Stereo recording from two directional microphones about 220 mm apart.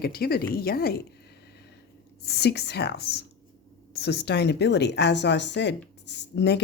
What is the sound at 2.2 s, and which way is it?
Speech, 50° left (ahead or behind).